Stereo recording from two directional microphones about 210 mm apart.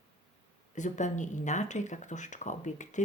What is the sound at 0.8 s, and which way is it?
Speech, 35° left (ahead or behind).